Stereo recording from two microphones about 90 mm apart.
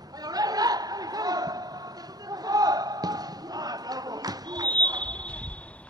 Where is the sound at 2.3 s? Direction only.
45° right (ahead or behind).